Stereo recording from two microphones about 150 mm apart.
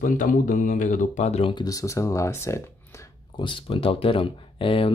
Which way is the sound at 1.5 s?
25° left (ahead or behind).